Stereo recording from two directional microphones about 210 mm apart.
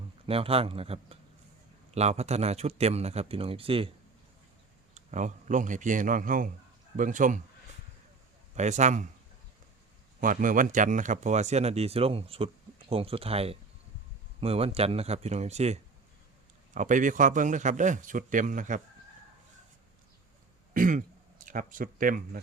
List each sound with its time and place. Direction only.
0.3 s a man's voice: 25° right (ahead or behind)
4.9 s speech: 35° right (ahead or behind)
8.5 s speech: 35° right (ahead or behind)
10.2 s speech: 40° right (ahead or behind)
20.7 s speech: 40° right (ahead or behind)